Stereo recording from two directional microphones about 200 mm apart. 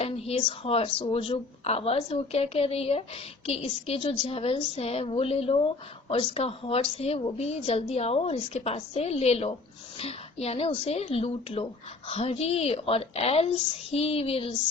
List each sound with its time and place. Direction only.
0.0 s a woman's voice: 30° left (ahead or behind)